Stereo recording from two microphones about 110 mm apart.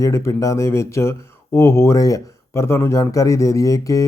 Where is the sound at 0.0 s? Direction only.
30° left (ahead or behind).